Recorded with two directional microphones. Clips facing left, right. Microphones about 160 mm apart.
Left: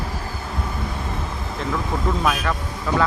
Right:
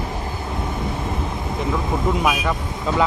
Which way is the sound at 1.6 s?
15° right (ahead or behind).